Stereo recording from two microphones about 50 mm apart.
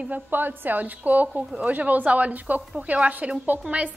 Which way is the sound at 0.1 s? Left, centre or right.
Right.